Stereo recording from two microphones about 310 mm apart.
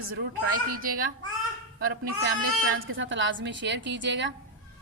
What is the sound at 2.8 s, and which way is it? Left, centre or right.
A woman's voice, right.